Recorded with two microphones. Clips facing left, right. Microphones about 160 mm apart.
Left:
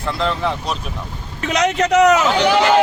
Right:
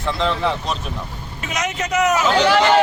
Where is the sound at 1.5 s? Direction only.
70° left (ahead or behind).